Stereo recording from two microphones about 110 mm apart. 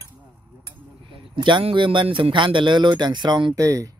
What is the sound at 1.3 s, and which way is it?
Speech, 50° right (ahead or behind).